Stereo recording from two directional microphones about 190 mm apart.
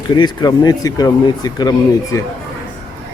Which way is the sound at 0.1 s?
20° left (ahead or behind).